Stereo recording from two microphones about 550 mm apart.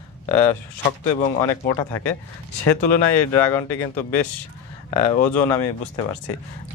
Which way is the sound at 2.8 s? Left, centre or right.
Left.